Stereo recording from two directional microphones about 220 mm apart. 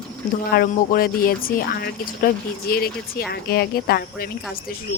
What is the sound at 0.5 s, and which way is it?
Speech, 40° left (ahead or behind).